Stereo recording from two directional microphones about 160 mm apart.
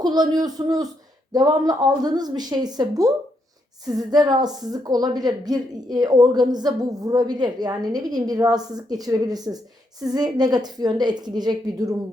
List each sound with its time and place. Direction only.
0.0 s a woman's voice: 25° right (ahead or behind)